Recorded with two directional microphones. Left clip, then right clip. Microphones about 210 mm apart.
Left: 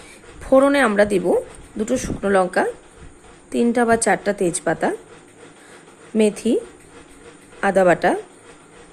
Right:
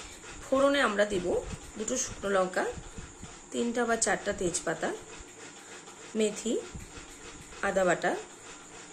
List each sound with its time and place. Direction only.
0.5 s a woman's voice: 35° left (ahead or behind)
6.1 s a woman's voice: 40° left (ahead or behind)
7.6 s a woman's voice: 40° left (ahead or behind)